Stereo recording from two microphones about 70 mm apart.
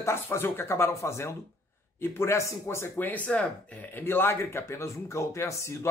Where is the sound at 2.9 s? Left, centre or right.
Left.